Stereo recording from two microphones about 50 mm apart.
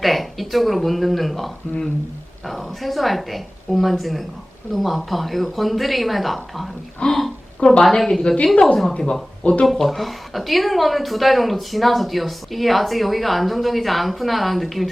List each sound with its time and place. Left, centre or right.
0.0 s speech: centre
7.0 s speech: centre
9.4 s speech: left
9.6 s speech: centre